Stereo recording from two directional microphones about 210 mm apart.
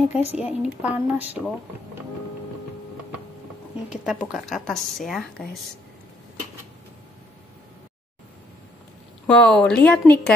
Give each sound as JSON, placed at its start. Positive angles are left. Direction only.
{"t": 0.2, "sound": "speech", "side_deg": 30}
{"t": 0.8, "sound": "speech", "side_deg": -5}
{"t": 3.9, "sound": "a woman's voice", "side_deg": -5}
{"t": 9.3, "sound": "a woman's voice", "side_deg": 5}